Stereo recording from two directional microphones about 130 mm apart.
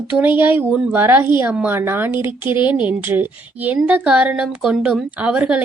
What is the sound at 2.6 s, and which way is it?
Speech, 40° left (ahead or behind).